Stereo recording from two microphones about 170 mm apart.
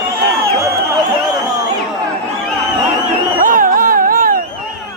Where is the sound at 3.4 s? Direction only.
50° right (ahead or behind).